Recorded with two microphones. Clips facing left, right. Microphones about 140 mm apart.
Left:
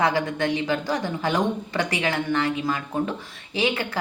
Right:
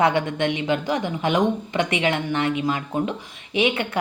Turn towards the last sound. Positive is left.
turn(degrees=-25)  # may be behind; listen again after turning